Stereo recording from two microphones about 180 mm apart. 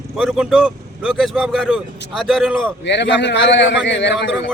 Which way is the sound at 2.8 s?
75° left (ahead or behind).